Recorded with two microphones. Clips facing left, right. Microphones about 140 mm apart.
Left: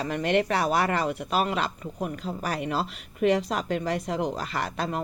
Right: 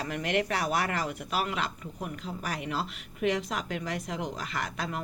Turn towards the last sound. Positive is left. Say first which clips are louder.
# left 5 dB
turn(degrees=35)  # may be behind; listen again after turning